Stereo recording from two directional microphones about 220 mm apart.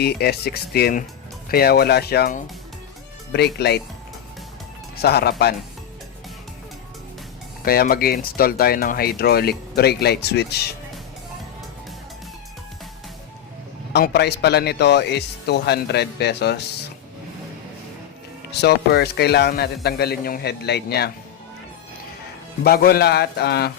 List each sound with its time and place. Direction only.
0.0 s speech: 45° left (ahead or behind)
4.9 s speech: 45° left (ahead or behind)
7.6 s speech: 40° left (ahead or behind)
13.9 s speech: 50° left (ahead or behind)
18.6 s speech: 45° left (ahead or behind)
22.6 s speech: 45° left (ahead or behind)